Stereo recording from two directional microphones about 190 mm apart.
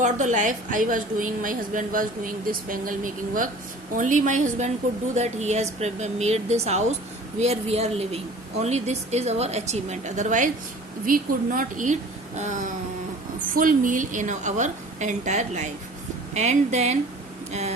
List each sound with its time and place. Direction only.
0.0 s a woman's voice: 40° right (ahead or behind)